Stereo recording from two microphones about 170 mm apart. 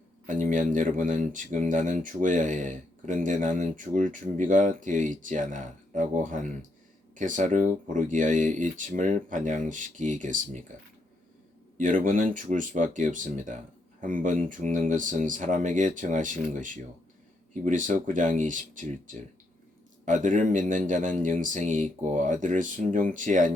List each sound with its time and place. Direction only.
0.3 s speech: 50° right (ahead or behind)
11.8 s speech: 50° right (ahead or behind)